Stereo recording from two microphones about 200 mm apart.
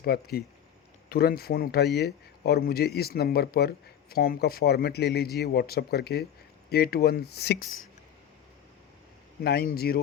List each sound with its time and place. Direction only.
0.0 s a man's voice: 50° left (ahead or behind)
9.4 s a man's voice: 50° left (ahead or behind)